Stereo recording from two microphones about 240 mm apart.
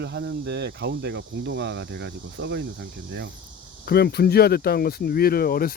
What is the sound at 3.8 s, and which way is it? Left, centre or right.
Speech, left.